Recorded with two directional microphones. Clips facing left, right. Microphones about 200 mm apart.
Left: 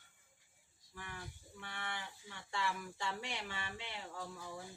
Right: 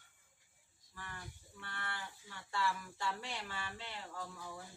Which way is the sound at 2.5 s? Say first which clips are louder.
Right 2 dB; 20° left (ahead or behind).